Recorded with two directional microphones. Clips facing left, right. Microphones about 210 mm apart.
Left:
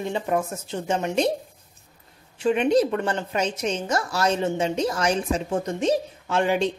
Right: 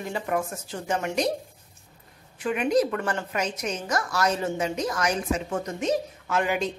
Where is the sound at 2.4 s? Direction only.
30° left (ahead or behind).